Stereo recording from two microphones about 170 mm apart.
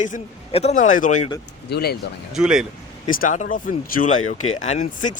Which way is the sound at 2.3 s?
5° right (ahead or behind).